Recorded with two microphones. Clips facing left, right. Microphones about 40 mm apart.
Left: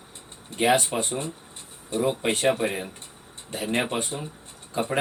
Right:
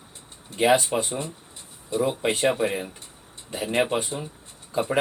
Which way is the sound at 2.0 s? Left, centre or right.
Centre.